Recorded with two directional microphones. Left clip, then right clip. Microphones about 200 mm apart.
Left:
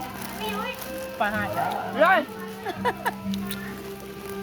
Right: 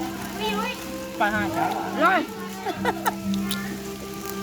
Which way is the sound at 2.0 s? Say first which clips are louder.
Left 1 dB; 55° left (ahead or behind).